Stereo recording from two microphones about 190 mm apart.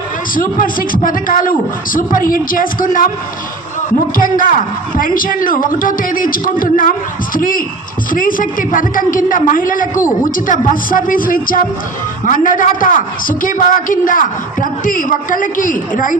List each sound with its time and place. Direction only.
0.3 s a woman's voice: 45° left (ahead or behind)
4.2 s a woman's voice: 45° left (ahead or behind)